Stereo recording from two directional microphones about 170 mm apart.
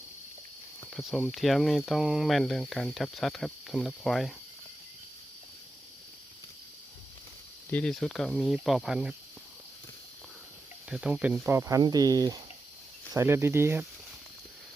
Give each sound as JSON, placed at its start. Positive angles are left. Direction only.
{"t": 0.9, "sound": "speech", "side_deg": 0}
{"t": 7.7, "sound": "speech", "side_deg": 5}
{"t": 10.8, "sound": "speech", "side_deg": -5}